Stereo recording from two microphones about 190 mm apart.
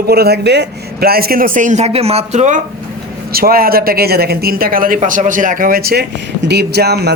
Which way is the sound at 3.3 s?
50° right (ahead or behind).